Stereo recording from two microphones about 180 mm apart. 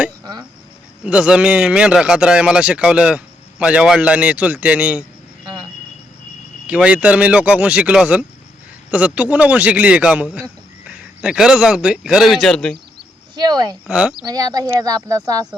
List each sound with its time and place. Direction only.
1.0 s a man's voice: 5° right (ahead or behind)
6.7 s a man's voice: 5° right (ahead or behind)
13.3 s speech: 25° right (ahead or behind)
13.8 s a man's voice: 5° right (ahead or behind)
14.2 s speech: 20° right (ahead or behind)